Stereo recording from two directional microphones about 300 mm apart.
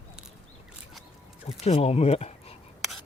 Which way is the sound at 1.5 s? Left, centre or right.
Left.